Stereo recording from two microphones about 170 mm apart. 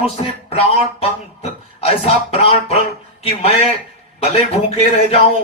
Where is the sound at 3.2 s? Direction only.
35° left (ahead or behind).